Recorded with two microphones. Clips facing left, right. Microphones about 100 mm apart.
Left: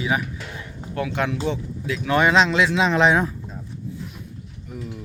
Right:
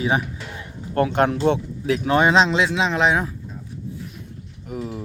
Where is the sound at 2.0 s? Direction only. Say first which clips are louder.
Right 1 dB; 30° right (ahead or behind).